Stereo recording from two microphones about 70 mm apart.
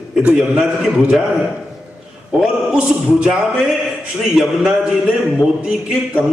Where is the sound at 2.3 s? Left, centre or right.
Centre.